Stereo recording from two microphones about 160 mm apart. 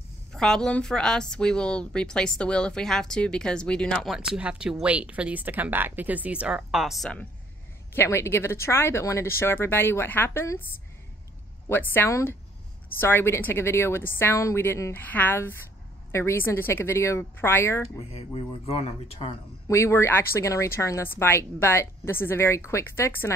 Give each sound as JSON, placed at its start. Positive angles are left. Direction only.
{"t": 0.3, "sound": "a woman's voice", "side_deg": 5}
{"t": 7.9, "sound": "speech", "side_deg": 15}
{"t": 11.7, "sound": "speech", "side_deg": 15}
{"t": 18.1, "sound": "speech", "side_deg": 40}
{"t": 19.7, "sound": "speech", "side_deg": 15}